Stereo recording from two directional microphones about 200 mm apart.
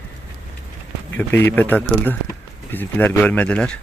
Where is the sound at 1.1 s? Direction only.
10° left (ahead or behind).